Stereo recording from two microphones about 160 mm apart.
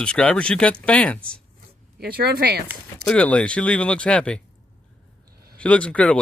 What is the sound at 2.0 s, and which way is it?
Speech, 80° right.